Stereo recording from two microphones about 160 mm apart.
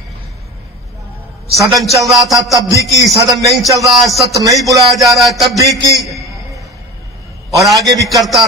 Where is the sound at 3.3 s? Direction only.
25° right (ahead or behind).